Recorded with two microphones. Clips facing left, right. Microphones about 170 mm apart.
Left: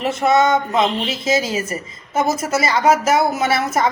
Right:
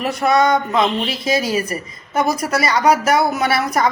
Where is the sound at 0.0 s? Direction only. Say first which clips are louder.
Even; 25° left (ahead or behind).